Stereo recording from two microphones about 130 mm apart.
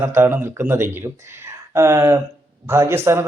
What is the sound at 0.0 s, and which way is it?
Speech, 20° right (ahead or behind).